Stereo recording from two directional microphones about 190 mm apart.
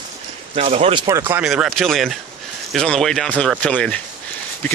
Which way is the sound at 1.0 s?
15° right (ahead or behind).